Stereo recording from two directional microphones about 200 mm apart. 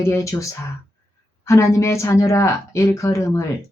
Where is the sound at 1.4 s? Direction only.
15° left (ahead or behind).